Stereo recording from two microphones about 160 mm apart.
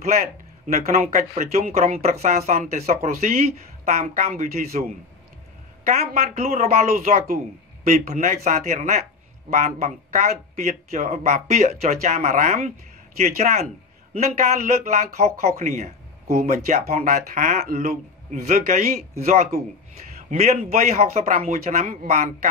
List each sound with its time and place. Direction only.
0.9 s speech: 45° right (ahead or behind)
3.8 s speech: 45° right (ahead or behind)
5.9 s speech: 45° right (ahead or behind)